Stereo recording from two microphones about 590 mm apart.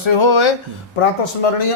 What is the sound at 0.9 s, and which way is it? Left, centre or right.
Speech, left.